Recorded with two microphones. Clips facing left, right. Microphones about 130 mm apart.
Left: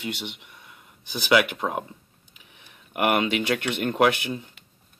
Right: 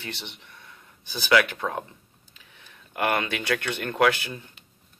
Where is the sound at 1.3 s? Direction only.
15° left (ahead or behind).